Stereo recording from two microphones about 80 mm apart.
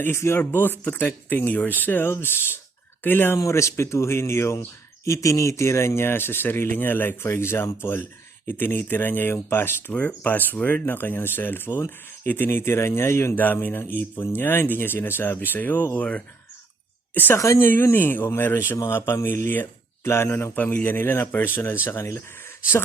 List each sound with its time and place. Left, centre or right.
0.0 s speech: left
3.3 s speech: left
9.9 s speech: centre
17.3 s speech: left